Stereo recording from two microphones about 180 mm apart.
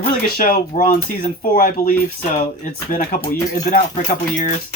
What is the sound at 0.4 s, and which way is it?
Speech, 55° left (ahead or behind).